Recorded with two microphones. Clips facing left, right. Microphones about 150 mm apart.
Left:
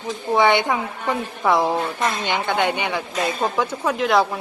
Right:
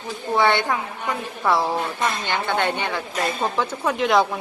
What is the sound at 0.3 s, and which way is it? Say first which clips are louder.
Speech: left 2 dB; 15° left (ahead or behind).